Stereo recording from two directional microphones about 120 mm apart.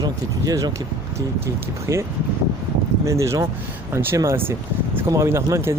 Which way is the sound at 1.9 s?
25° right (ahead or behind).